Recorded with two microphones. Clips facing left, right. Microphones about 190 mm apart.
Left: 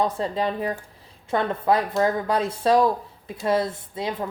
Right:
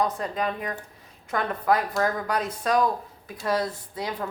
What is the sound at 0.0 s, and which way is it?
Speech, 25° left (ahead or behind).